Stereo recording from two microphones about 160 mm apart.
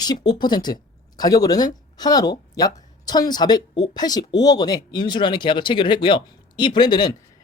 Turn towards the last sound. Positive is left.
turn(degrees=30)  # may be behind; listen again after turning